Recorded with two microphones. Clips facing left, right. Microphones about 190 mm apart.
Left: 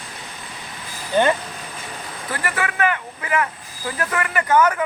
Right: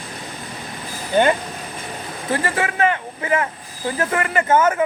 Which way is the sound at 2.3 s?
25° right (ahead or behind).